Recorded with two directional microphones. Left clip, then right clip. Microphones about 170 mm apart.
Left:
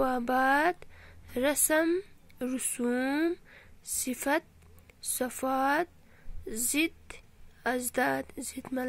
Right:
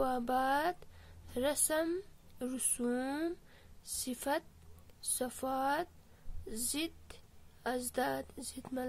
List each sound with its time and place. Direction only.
0.0 s a woman's voice: 20° left (ahead or behind)